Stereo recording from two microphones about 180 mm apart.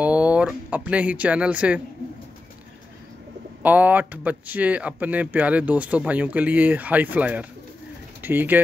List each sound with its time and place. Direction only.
0.0 s music: 5° right (ahead or behind)
3.6 s speech: 10° right (ahead or behind)